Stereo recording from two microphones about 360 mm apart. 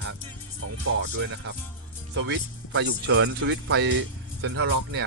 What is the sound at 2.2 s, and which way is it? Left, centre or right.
Speech, right.